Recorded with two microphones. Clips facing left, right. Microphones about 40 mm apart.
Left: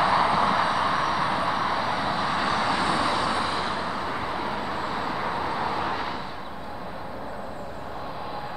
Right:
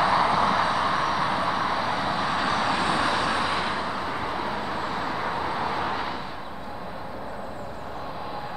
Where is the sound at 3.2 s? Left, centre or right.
Right.